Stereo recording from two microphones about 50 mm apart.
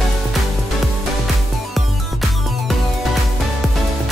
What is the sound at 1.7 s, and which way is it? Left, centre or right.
Music, centre.